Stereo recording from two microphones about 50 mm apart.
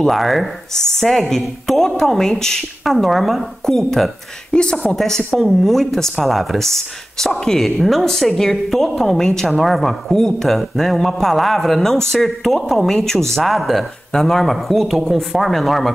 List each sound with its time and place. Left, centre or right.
0.0 s a woman's voice: centre
4.5 s speech: centre
4.9 s speech: centre